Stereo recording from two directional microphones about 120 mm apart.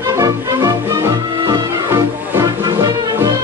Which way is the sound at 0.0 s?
30° right (ahead or behind).